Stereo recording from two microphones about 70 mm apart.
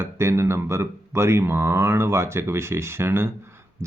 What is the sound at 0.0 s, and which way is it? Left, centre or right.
Speech, right.